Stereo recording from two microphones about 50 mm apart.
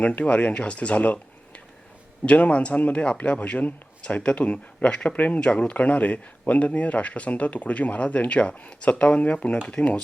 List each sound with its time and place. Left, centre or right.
0.0 s speech: left
5.4 s speech: left